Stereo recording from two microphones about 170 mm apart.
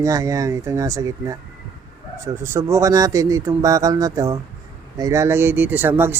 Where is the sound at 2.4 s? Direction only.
15° right (ahead or behind).